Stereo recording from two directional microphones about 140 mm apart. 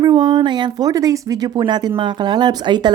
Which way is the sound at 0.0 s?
35° right (ahead or behind).